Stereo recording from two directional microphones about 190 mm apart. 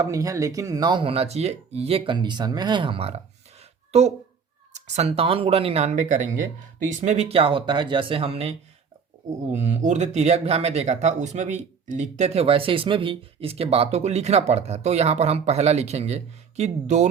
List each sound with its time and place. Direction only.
0.0 s speech: 20° right (ahead or behind)
3.6 s a sound: 35° right (ahead or behind)
4.7 s speech: 35° right (ahead or behind)